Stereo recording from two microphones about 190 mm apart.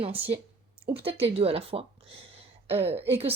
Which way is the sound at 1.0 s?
30° right (ahead or behind).